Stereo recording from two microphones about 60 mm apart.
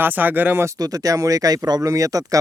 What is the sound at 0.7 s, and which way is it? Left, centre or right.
Speech, right.